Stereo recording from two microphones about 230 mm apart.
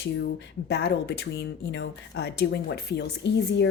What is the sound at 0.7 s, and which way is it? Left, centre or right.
Speech, left.